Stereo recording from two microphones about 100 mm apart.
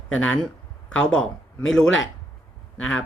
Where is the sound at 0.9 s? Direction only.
10° left (ahead or behind).